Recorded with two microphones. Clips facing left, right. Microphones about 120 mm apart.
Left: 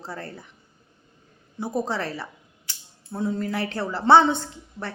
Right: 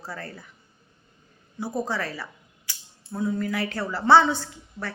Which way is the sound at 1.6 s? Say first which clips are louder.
Left 2 dB; 25° left (ahead or behind).